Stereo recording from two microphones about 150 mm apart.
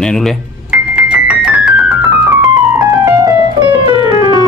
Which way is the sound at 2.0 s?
15° right (ahead or behind).